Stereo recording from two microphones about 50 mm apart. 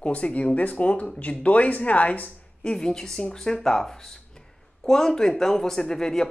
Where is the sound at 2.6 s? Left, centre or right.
Centre.